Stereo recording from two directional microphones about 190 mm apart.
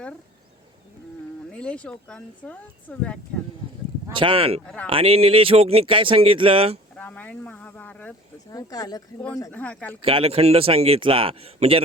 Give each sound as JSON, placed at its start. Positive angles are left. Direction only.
{"t": 1.5, "sound": "speech", "side_deg": 5}
{"t": 4.1, "sound": "speech", "side_deg": -30}
{"t": 4.6, "sound": "speech", "side_deg": 5}
{"t": 4.9, "sound": "speech", "side_deg": -30}
{"t": 6.9, "sound": "speech", "side_deg": 5}
{"t": 8.4, "sound": "speech", "side_deg": 20}
{"t": 9.5, "sound": "speech", "side_deg": 5}
{"t": 10.0, "sound": "a man's voice", "side_deg": -30}